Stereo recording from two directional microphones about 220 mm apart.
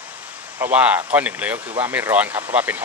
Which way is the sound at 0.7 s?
5° right (ahead or behind).